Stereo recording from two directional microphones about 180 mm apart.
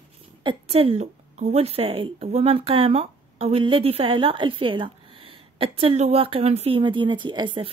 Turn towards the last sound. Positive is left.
turn(degrees=-25)  # may be behind; listen again after turning